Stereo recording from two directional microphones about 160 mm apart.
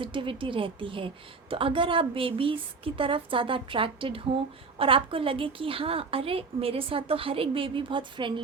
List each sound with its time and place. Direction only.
0.0 s a woman's voice: 30° right (ahead or behind)